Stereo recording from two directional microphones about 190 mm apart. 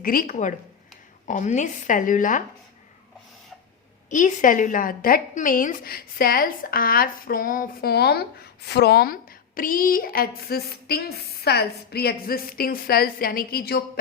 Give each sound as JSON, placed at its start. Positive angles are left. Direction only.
{"t": 0.0, "sound": "a woman's voice", "side_deg": 50}
{"t": 4.1, "sound": "a woman's voice", "side_deg": 40}